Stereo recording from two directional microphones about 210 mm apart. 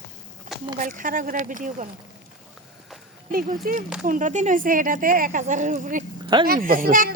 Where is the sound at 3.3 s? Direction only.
40° right (ahead or behind).